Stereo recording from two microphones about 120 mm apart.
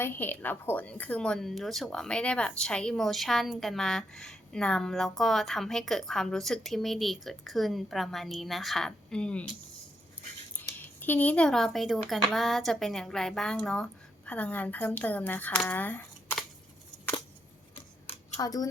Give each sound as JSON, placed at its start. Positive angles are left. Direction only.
{"t": 0.0, "sound": "speech", "side_deg": 15}
{"t": 10.6, "sound": "speech", "side_deg": 15}
{"t": 18.3, "sound": "speech", "side_deg": 30}